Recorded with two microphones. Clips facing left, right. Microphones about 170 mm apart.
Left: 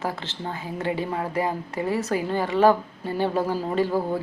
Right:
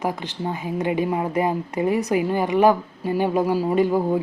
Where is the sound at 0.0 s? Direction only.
15° right (ahead or behind).